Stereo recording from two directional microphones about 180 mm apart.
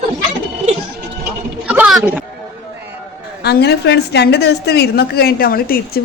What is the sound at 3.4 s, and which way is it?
A woman's voice, 65° left (ahead or behind).